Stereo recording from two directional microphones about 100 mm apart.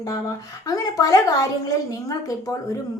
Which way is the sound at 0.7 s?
35° left (ahead or behind).